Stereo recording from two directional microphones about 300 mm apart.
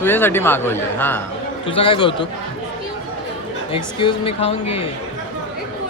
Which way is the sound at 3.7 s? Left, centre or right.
Centre.